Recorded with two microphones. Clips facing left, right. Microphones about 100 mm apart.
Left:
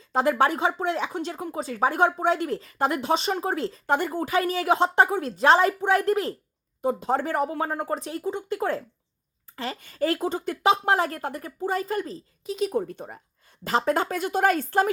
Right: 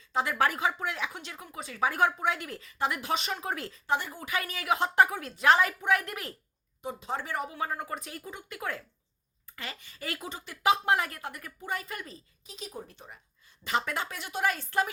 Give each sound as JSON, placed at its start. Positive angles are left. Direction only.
{"t": 0.1, "sound": "speech", "side_deg": 40}
{"t": 0.3, "sound": "speech", "side_deg": 25}
{"t": 3.0, "sound": "speech", "side_deg": 30}
{"t": 3.8, "sound": "speech", "side_deg": 50}
{"t": 4.3, "sound": "speech", "side_deg": 30}
{"t": 6.8, "sound": "speech", "side_deg": 45}
{"t": 9.5, "sound": "a sound", "side_deg": 30}
{"t": 9.8, "sound": "speech", "side_deg": 40}
{"t": 10.6, "sound": "speech", "side_deg": 30}
{"t": 12.5, "sound": "a woman's voice", "side_deg": 65}
{"t": 13.7, "sound": "speech", "side_deg": 35}